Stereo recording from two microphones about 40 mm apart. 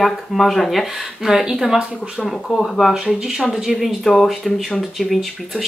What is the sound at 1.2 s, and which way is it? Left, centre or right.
Speech, centre.